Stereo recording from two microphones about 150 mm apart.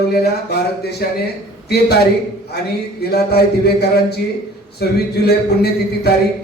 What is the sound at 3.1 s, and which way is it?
Speech, 90° left.